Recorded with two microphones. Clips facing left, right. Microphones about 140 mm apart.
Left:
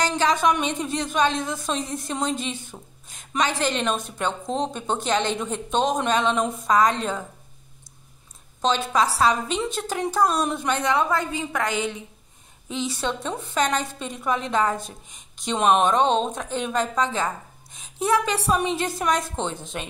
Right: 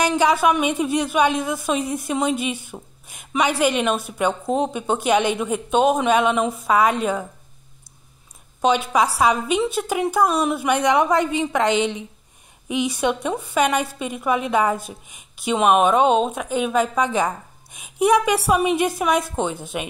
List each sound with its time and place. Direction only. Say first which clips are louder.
0.0 s a woman's voice: right 4 dB; 10° right (ahead or behind)
8.6 s a woman's voice: right 3 dB; 10° right (ahead or behind)